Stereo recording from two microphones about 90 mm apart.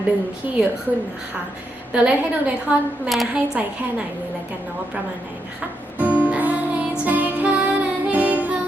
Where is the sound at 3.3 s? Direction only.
15° right (ahead or behind).